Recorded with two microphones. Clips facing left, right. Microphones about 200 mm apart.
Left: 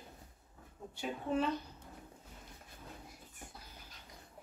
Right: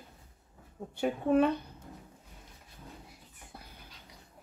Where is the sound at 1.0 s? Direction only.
55° right (ahead or behind).